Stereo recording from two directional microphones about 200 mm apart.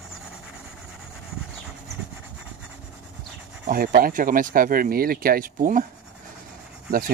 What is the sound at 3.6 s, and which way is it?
Speech, 45° right (ahead or behind).